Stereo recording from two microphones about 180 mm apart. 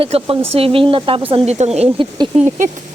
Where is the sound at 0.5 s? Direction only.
30° right (ahead or behind).